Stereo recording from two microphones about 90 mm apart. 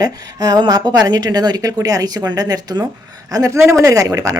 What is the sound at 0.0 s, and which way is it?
Speech, 45° right (ahead or behind).